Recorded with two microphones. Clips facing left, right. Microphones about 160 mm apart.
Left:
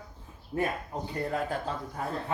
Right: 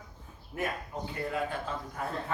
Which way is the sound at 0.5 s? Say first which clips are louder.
Left 4 dB; 35° left (ahead or behind).